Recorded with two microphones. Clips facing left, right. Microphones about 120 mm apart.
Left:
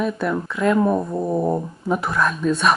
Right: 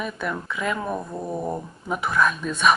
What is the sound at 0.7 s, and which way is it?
Speech, 10° left (ahead or behind).